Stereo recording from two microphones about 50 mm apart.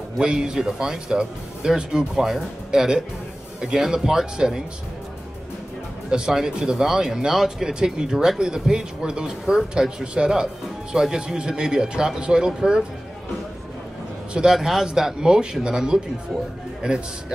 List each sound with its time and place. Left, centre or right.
0.2 s speech: centre
6.0 s speech: centre
14.4 s speech: centre